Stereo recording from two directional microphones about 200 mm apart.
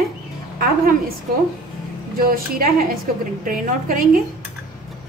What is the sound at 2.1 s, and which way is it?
A woman's voice, 45° right (ahead or behind).